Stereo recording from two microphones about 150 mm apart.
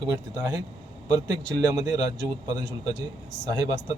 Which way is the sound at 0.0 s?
25° right (ahead or behind).